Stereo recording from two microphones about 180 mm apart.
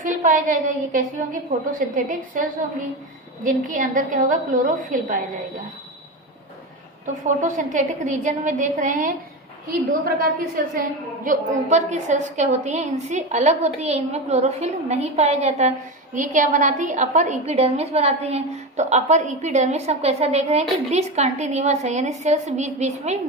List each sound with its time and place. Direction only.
0.0 s a woman's voice: 45° right (ahead or behind)
3.4 s a woman's voice: 45° right (ahead or behind)
7.4 s a woman's voice: 45° right (ahead or behind)
9.8 s a woman's voice: 55° right (ahead or behind); by 23.1 s 40° right (ahead or behind)